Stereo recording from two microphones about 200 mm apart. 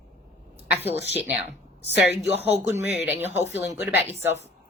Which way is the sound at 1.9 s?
55° left (ahead or behind).